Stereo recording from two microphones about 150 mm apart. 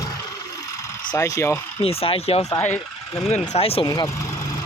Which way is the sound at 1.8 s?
40° left (ahead or behind).